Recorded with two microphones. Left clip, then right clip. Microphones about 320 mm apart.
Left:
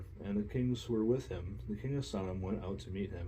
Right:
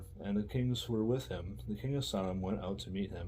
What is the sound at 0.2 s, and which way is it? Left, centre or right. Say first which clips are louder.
Speech: even; right.